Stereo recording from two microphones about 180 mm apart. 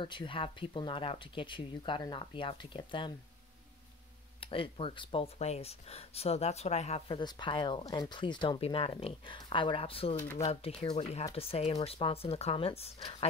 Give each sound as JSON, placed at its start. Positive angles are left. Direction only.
{"t": 0.0, "sound": "speech", "side_deg": 25}
{"t": 4.4, "sound": "speech", "side_deg": 30}